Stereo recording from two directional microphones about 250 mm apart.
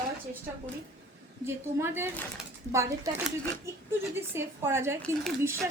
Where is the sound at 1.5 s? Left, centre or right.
Centre.